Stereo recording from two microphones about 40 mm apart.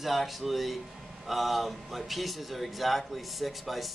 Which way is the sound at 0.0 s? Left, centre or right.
Centre.